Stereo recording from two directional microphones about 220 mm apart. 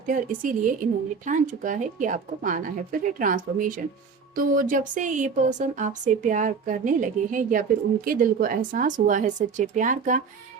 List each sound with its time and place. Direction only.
0.0 s a woman's voice: 35° right (ahead or behind)